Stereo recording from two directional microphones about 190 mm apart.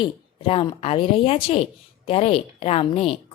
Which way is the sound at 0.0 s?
30° left (ahead or behind).